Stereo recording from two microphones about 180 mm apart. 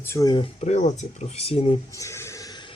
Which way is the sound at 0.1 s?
20° left (ahead or behind).